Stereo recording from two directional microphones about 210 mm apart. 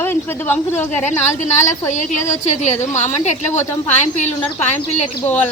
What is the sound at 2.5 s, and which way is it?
A woman's voice, 35° left (ahead or behind).